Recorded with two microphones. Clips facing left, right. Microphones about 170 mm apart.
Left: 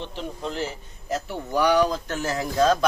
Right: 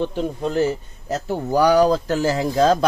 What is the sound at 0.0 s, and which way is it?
Speech, 45° right (ahead or behind).